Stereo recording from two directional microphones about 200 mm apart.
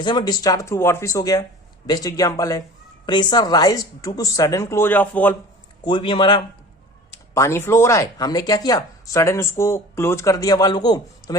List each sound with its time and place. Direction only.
0.0 s speech: 20° left (ahead or behind)
5.8 s a man's voice: 25° left (ahead or behind)
7.1 s speech: 15° left (ahead or behind)